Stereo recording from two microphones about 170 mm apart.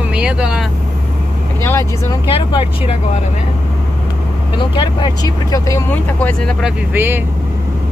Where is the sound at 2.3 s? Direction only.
35° left (ahead or behind).